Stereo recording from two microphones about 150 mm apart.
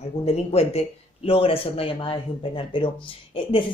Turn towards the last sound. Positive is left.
turn(degrees=35)  # may be behind; listen again after turning